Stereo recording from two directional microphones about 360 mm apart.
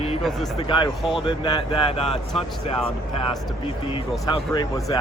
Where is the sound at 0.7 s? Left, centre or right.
Centre.